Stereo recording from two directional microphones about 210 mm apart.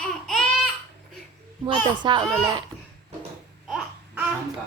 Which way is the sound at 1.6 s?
20° right (ahead or behind).